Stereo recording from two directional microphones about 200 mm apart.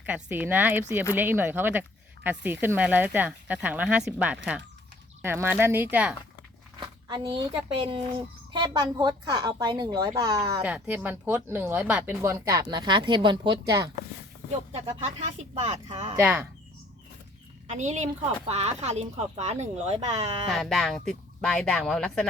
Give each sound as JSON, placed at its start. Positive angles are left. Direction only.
{"t": 0.0, "sound": "speech", "side_deg": -10}
{"t": 6.7, "sound": "a woman's voice", "side_deg": -25}
{"t": 10.6, "sound": "speech", "side_deg": -5}
{"t": 14.7, "sound": "speech", "side_deg": -30}
{"t": 16.1, "sound": "speech", "side_deg": -10}
{"t": 17.7, "sound": "speech", "side_deg": -35}
{"t": 20.5, "sound": "speech", "side_deg": 0}